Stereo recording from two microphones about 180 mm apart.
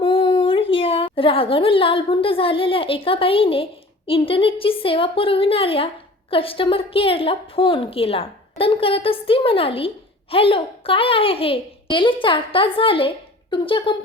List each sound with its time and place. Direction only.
0.0 s a woman's voice: 30° left (ahead or behind)